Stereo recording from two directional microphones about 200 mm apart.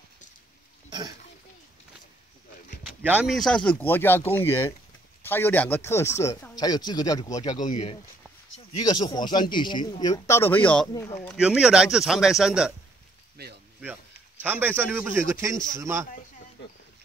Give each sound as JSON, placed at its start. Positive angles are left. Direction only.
{"t": 0.8, "sound": "a sound", "side_deg": -20}
{"t": 3.0, "sound": "speech", "side_deg": -5}
{"t": 7.6, "sound": "speech", "side_deg": 35}
{"t": 8.7, "sound": "speech", "side_deg": 20}
{"t": 11.2, "sound": "speech", "side_deg": -5}
{"t": 13.4, "sound": "speech", "side_deg": -55}
{"t": 14.4, "sound": "speech", "side_deg": -10}